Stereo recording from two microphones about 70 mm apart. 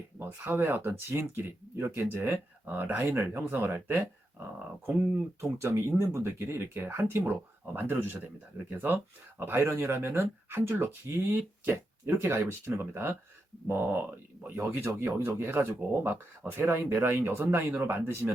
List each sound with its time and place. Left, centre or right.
0.2 s speech: right
1.7 s speech: right
2.1 s speech: right
3.1 s speech: right
5.4 s speech: right
9.4 s speech: right